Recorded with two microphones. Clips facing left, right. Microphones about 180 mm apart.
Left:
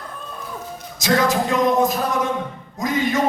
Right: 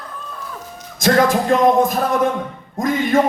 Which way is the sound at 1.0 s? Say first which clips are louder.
Right 4 dB; 50° right (ahead or behind).